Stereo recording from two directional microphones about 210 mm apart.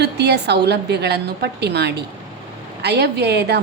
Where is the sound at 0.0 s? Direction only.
50° right (ahead or behind).